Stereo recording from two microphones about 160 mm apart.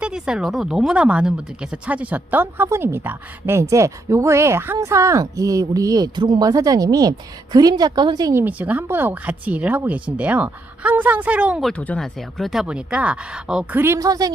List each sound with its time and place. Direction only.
0.0 s speech: 5° right (ahead or behind)
11.7 s speech: 5° left (ahead or behind); by 14.3 s 20° right (ahead or behind)